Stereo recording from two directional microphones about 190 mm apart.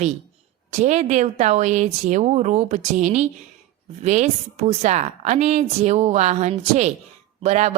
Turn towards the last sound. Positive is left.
turn(degrees=-35)  # may be behind; listen again after turning